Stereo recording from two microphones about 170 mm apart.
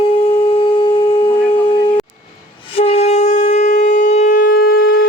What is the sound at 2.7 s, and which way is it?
Shofar, 35° left (ahead or behind).